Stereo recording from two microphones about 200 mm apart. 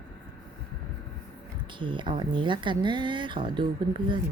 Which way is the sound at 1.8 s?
25° right (ahead or behind).